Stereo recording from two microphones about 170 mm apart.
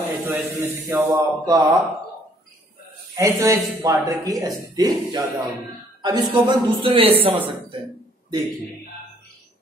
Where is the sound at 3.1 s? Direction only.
15° right (ahead or behind); by 7.3 s 35° right (ahead or behind).